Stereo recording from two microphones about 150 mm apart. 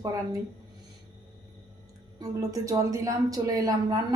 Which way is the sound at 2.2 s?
20° right (ahead or behind).